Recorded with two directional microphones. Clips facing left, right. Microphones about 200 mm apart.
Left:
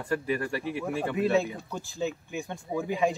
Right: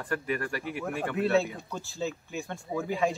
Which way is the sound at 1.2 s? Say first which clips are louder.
Even; 15° left (ahead or behind).